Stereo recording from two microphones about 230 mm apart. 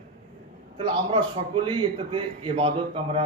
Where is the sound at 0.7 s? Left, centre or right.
Right.